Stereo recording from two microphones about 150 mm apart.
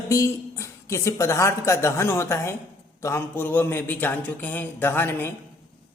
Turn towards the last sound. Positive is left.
turn(degrees=15)  # may be behind; listen again after turning